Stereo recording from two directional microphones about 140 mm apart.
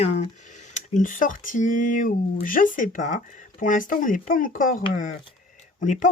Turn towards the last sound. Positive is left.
turn(degrees=60)  # may be behind; listen again after turning